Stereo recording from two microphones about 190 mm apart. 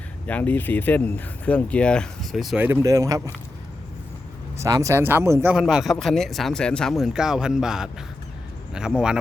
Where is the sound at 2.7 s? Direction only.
15° right (ahead or behind).